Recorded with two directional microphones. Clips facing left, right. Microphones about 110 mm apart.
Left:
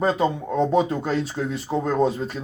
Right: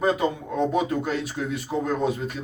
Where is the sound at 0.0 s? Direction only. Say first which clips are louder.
Left 2 dB; 30° left (ahead or behind).